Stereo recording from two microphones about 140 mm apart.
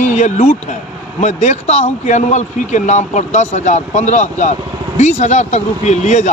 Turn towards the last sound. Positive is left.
turn(degrees=55)  # may be behind; listen again after turning